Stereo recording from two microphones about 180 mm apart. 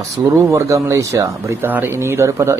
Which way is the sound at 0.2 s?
15° right (ahead or behind).